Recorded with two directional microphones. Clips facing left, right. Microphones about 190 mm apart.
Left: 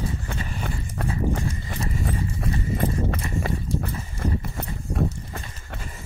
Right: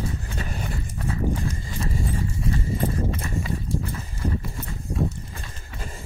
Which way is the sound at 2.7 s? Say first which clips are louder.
Left 3 dB; 60° left (ahead or behind).